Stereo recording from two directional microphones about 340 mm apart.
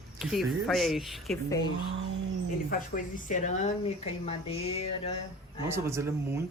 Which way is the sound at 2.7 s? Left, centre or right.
Left.